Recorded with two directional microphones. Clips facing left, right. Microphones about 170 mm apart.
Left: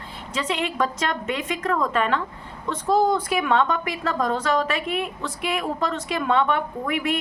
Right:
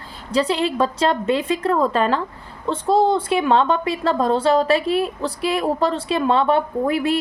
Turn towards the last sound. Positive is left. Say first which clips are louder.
# right 6 dB
turn(degrees=-35)  # may be behind; listen again after turning